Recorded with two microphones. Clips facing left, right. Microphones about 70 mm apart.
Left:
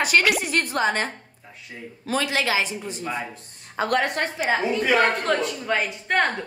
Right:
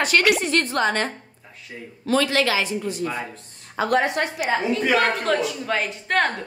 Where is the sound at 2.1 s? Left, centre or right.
Centre.